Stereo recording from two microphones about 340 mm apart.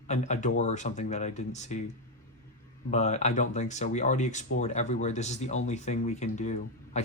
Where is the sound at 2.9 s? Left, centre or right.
Centre.